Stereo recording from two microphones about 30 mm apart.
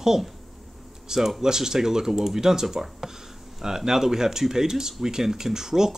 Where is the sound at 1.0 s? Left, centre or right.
Centre.